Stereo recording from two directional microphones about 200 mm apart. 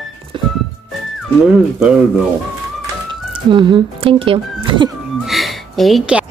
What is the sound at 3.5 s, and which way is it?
A woman's voice, 25° right (ahead or behind).